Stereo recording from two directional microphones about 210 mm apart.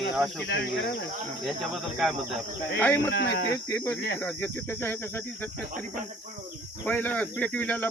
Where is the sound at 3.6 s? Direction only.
10° left (ahead or behind).